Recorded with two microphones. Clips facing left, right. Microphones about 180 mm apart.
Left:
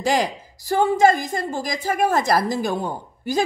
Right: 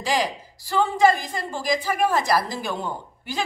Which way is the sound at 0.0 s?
50° left (ahead or behind).